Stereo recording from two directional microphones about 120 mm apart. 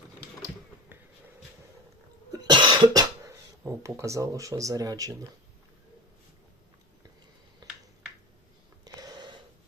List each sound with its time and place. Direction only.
2.3 s cough: 40° right (ahead or behind)
3.6 s speech: 20° right (ahead or behind)
7.6 s finger snapping: 35° right (ahead or behind)
8.8 s a sound: 35° right (ahead or behind)